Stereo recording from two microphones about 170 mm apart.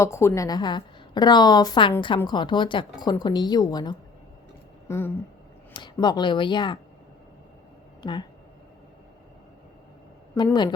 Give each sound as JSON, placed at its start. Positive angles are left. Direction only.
{"t": 0.0, "sound": "speech", "side_deg": 15}
{"t": 4.9, "sound": "a sound", "side_deg": 15}
{"t": 5.7, "sound": "speech", "side_deg": 25}
{"t": 8.0, "sound": "speech", "side_deg": 25}
{"t": 10.3, "sound": "speech", "side_deg": 25}